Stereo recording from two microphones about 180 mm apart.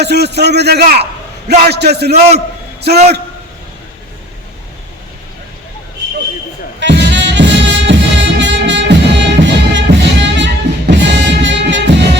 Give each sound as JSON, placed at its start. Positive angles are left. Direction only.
{"t": 0.0, "sound": "a man's voice", "side_deg": -70}
{"t": 6.7, "sound": "music", "side_deg": -80}